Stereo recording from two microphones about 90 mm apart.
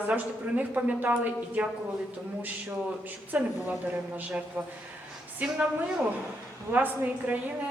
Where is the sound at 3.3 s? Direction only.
20° right (ahead or behind).